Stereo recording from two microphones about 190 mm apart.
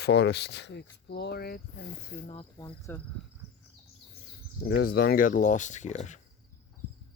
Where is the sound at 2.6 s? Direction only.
15° left (ahead or behind).